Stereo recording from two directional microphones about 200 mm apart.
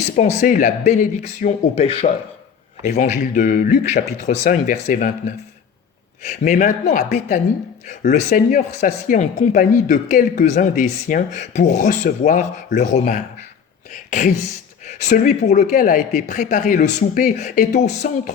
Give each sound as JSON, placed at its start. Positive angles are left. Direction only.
{"t": 0.2, "sound": "speech", "side_deg": 40}
{"t": 6.2, "sound": "speech", "side_deg": 40}
{"t": 13.9, "sound": "a sound", "side_deg": 40}
{"t": 14.8, "sound": "speech", "side_deg": 40}